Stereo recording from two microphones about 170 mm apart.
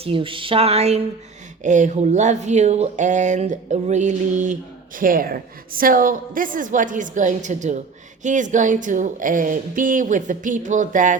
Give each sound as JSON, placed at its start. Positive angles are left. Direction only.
{"t": 0.0, "sound": "a sound", "side_deg": -30}
{"t": 1.6, "sound": "a woman's voice", "side_deg": -45}
{"t": 4.9, "sound": "a woman's voice", "side_deg": -55}